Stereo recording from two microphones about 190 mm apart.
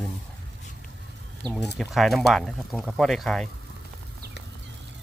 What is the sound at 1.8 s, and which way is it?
Speech, centre (ahead or behind).